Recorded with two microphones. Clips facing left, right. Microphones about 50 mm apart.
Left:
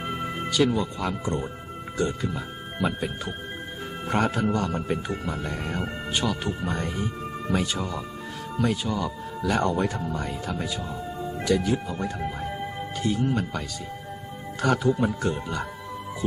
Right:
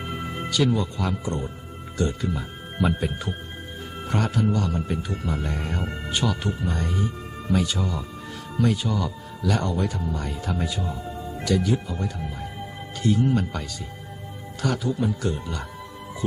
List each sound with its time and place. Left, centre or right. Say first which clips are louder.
0.5 s speech: even; centre
1.2 s speech: left 1 dB; left
2.0 s speech: right 1 dB; centre
4.1 s speech: even; left
5.2 s speech: right 1 dB; centre
6.7 s speech: right 1 dB; left
9.4 s speech: left 1 dB; left
10.2 s speech: right 1 dB; centre
11.4 s speech: even; centre
13.0 s speech: right 4 dB; centre
14.6 s speech: left 3 dB; left
15.2 s speech: left 1 dB; left